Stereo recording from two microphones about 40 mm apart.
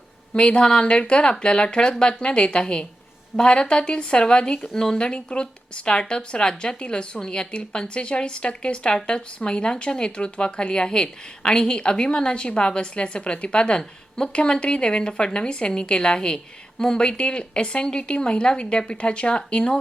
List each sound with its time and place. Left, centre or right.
0.3 s speech: left